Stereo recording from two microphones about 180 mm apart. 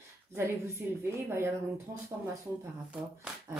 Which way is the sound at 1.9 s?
50° right (ahead or behind).